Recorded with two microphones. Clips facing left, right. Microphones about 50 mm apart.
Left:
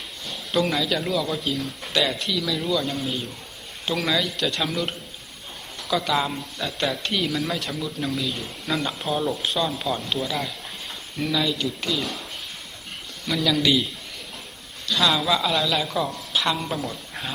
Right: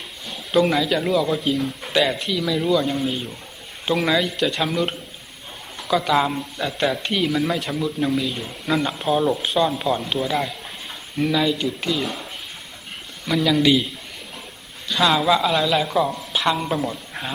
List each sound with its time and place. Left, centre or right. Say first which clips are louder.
0.3 s a man's voice: right 5 dB; centre
9.6 s speech: right 5 dB; centre
13.2 s speech: right 4 dB; centre